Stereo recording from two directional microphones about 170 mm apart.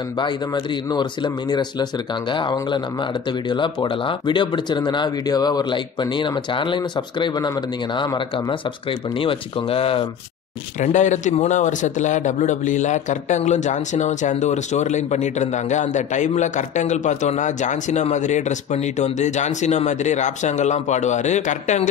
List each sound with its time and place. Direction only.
0.9 s speech: 25° left (ahead or behind)
10.8 s speech: 45° left (ahead or behind)